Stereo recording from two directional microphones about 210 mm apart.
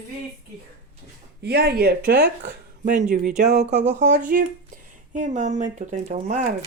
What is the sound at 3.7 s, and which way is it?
Speech, 55° right (ahead or behind).